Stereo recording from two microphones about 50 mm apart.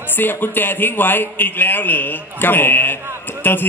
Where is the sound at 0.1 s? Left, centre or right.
Left.